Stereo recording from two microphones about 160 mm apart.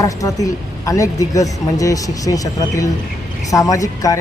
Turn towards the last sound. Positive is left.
turn(degrees=20)  # may be behind; listen again after turning